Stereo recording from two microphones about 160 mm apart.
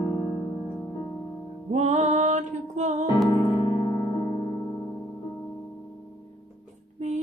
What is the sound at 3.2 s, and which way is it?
Music, 20° left (ahead or behind).